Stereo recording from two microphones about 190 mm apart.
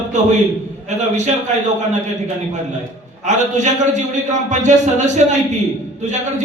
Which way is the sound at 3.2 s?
40° right (ahead or behind).